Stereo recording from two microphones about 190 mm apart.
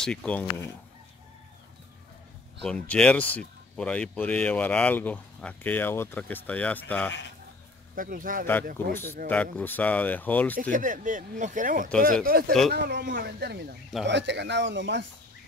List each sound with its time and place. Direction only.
0.0 s speech: 5° left (ahead or behind)
2.6 s speech: 5° left (ahead or behind)
7.9 s speech: 45° right (ahead or behind)
8.8 s speech: 10° left (ahead or behind)
10.6 s speech: 45° right (ahead or behind)
12.7 s speech: 60° right (ahead or behind)